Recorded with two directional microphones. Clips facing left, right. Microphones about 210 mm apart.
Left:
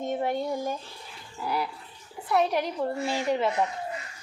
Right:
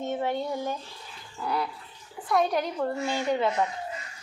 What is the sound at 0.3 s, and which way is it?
A woman's voice, 10° left (ahead or behind).